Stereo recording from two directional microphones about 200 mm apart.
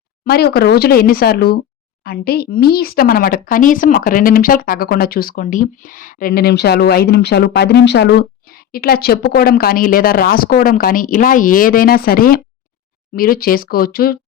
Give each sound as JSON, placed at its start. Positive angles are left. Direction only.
{"t": 0.3, "sound": "speech", "side_deg": 50}